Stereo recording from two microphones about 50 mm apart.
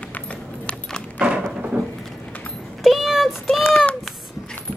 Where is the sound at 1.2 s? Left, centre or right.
Right.